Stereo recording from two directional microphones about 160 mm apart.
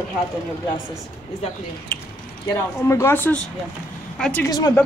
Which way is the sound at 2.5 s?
20° left (ahead or behind).